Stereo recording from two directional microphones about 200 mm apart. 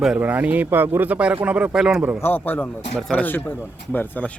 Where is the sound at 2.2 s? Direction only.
10° left (ahead or behind).